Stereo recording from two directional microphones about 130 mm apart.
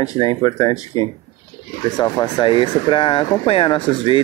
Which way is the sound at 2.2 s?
40° left (ahead or behind).